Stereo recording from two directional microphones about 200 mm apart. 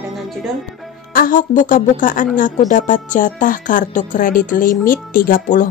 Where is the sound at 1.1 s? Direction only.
45° left (ahead or behind).